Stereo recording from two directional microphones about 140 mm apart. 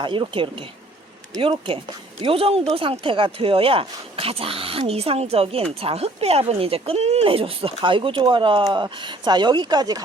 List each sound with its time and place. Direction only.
0.0 s speech: 35° right (ahead or behind)